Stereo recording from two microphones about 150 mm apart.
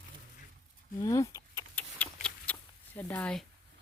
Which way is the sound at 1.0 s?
20° left (ahead or behind).